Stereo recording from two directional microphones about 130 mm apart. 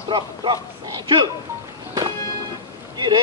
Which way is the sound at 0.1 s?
35° right (ahead or behind).